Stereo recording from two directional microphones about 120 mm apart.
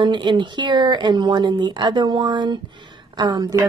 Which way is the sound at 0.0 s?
40° right (ahead or behind).